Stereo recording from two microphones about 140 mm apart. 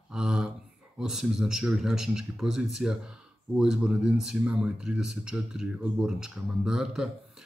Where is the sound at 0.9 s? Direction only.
5° right (ahead or behind).